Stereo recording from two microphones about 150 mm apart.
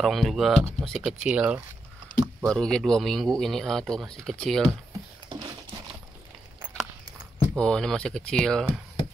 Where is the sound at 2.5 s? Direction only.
5° left (ahead or behind).